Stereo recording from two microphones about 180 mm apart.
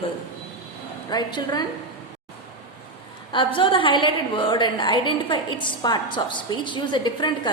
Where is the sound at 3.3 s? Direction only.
25° left (ahead or behind).